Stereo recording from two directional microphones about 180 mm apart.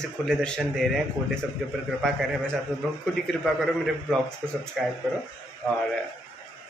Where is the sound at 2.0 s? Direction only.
Centre (ahead or behind).